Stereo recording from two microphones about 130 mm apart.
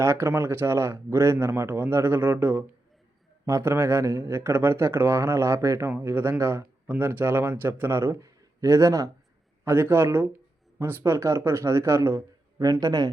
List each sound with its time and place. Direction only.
0.0 s speech: 20° right (ahead or behind)